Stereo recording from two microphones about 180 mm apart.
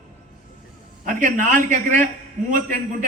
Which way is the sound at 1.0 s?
45° right (ahead or behind).